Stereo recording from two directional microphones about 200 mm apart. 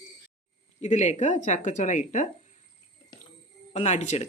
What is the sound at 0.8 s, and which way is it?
Speech, 35° left (ahead or behind).